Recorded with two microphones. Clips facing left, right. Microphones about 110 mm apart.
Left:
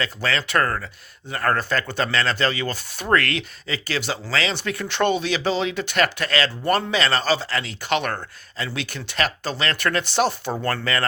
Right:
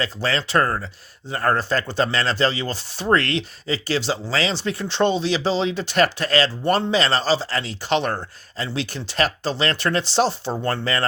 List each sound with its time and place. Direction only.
0.0 s speech: 35° right (ahead or behind)